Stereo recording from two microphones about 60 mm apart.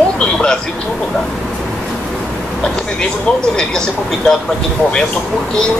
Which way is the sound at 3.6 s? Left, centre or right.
Centre.